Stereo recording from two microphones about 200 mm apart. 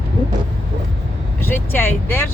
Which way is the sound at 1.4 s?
10° left (ahead or behind).